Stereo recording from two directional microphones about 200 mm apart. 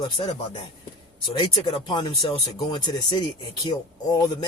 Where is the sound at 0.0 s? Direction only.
25° left (ahead or behind).